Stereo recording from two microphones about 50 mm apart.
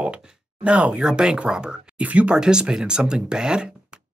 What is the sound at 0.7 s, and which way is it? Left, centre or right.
Speech, right.